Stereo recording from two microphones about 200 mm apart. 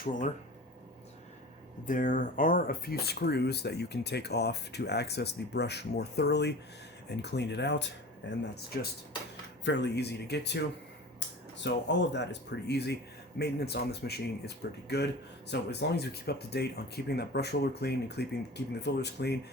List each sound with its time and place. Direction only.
1.9 s speech: 40° left (ahead or behind); by 8.4 s 65° left (ahead or behind)
9.6 s speech: 60° left (ahead or behind)
11.6 s speech: 60° left (ahead or behind)